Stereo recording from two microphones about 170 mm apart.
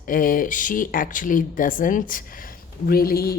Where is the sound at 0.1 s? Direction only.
55° left (ahead or behind).